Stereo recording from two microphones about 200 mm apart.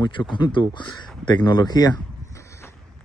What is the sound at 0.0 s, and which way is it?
Speech, 20° left (ahead or behind).